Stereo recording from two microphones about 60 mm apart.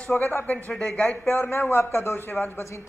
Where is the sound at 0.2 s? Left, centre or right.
Left.